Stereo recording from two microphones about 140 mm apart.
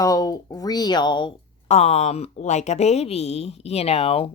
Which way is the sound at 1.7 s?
50° left (ahead or behind).